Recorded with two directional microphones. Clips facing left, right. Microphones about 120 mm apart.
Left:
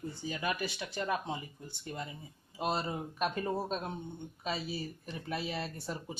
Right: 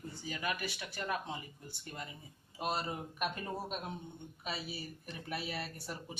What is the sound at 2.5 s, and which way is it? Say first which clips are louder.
Speech: left 3 dB; 25° left (ahead or behind).